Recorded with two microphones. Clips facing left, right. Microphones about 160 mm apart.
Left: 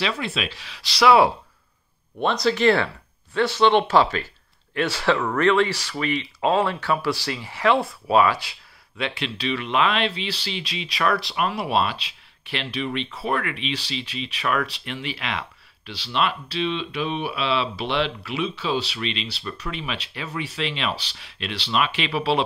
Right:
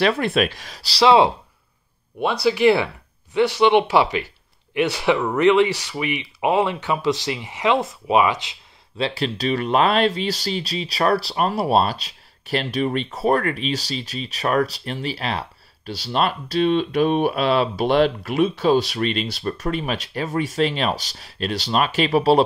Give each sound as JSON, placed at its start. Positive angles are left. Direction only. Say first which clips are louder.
{"t": 0.0, "sound": "speech", "louder": "right 8 dB", "side_deg": -55}
{"t": 2.1, "sound": "speech", "louder": "right 2 dB", "side_deg": -10}
{"t": 8.9, "sound": "speech", "louder": "right 5 dB", "side_deg": -35}